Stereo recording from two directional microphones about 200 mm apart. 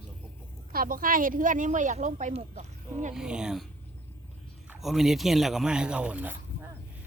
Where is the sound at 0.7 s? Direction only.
45° right (ahead or behind).